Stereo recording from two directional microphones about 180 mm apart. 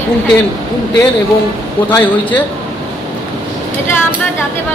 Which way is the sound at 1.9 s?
10° left (ahead or behind).